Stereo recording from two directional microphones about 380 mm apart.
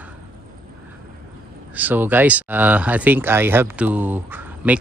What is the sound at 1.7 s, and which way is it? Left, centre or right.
Speech, centre.